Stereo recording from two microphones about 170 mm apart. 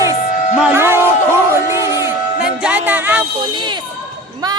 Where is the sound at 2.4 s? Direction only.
5° right (ahead or behind).